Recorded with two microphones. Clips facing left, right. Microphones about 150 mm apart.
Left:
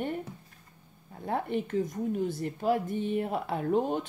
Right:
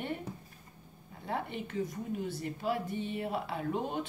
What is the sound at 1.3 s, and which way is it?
Speech, 50° left (ahead or behind).